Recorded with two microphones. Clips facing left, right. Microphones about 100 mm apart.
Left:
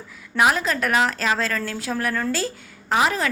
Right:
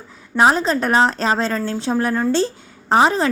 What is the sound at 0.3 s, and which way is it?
A woman's voice, 30° right (ahead or behind).